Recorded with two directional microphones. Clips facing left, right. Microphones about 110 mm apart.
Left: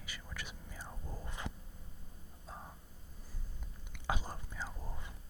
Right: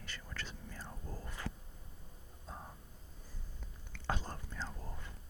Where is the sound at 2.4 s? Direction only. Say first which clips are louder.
Even; centre (ahead or behind).